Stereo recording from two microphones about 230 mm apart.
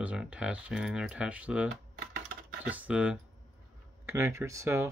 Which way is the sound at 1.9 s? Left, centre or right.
Right.